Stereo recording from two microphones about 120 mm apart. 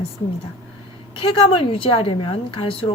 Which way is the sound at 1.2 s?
50° left (ahead or behind).